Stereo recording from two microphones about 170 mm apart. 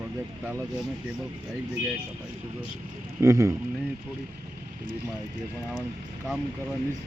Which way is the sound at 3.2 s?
20° right (ahead or behind).